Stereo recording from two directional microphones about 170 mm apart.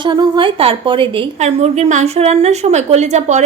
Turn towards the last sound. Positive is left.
turn(degrees=-40)  # may be behind; listen again after turning